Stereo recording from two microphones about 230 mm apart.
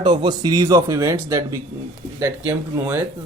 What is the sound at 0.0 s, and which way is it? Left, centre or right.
A man's voice, centre.